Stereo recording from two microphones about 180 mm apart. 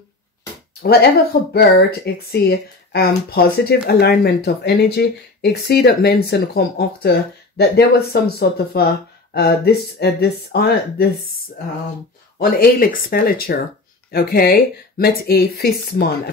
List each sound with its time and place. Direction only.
1.5 s speech: 65° left (ahead or behind)
12.4 s speech: 55° left (ahead or behind)